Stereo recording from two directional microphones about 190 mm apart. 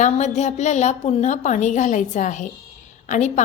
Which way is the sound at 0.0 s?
35° left (ahead or behind).